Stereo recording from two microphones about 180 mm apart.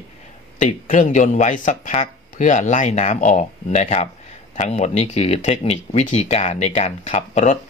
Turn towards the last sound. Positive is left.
turn(degrees=40)  # may be behind; listen again after turning